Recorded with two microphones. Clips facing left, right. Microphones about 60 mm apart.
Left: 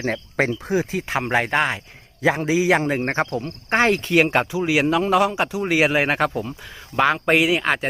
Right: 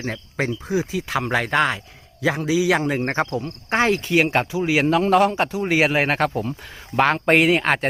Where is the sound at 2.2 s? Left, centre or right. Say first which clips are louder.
Left 1 dB; left.